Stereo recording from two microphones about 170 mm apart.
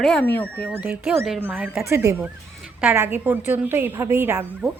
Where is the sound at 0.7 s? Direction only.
10° right (ahead or behind).